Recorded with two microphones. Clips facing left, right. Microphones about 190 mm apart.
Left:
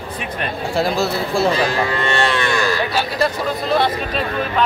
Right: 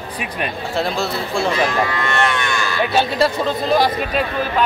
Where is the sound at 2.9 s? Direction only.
25° right (ahead or behind).